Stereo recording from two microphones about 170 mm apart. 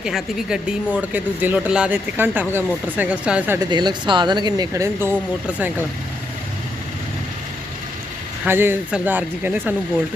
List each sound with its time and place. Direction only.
0.0 s speech: 5° right (ahead or behind)
3.7 s speech: 25° right (ahead or behind)
8.4 s speech: 15° right (ahead or behind)